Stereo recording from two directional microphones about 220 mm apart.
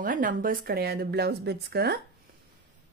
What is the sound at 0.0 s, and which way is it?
Speech, 40° right (ahead or behind).